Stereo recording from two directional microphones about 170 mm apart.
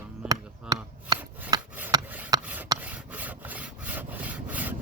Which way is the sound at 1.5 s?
25° right (ahead or behind).